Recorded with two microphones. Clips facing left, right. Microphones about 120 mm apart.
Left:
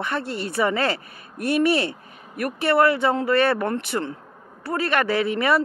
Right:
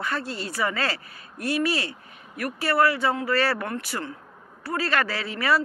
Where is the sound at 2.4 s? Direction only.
25° left (ahead or behind).